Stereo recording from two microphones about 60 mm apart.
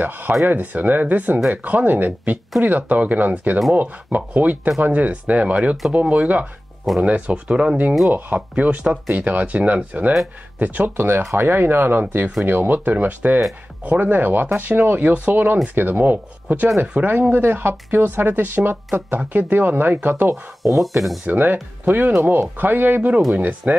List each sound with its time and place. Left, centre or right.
0.5 s speech: right
9.1 s speech: right
11.0 s speech: right
21.3 s speech: right